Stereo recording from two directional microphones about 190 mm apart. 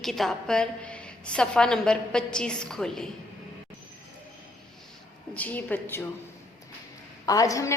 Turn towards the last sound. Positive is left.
turn(degrees=15)  # may be behind; listen again after turning